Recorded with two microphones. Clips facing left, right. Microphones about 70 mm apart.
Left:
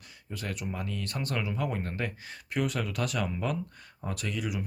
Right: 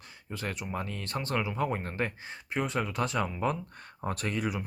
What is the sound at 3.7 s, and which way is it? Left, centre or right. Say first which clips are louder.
Speech: right 3 dB; right.